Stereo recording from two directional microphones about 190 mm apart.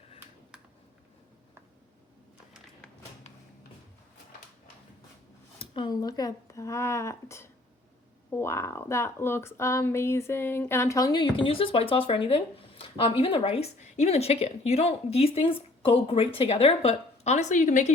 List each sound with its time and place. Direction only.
5.5 s a woman's voice: 25° left (ahead or behind); by 17.9 s 40° left (ahead or behind)